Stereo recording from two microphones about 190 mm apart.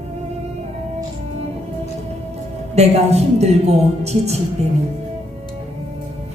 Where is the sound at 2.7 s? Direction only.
35° right (ahead or behind).